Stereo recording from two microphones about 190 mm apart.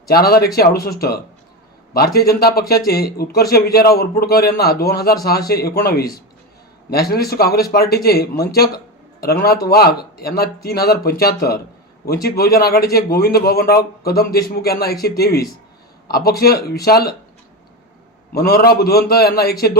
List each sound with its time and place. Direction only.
0.1 s a man's voice: 55° left (ahead or behind)
18.3 s a man's voice: 55° left (ahead or behind)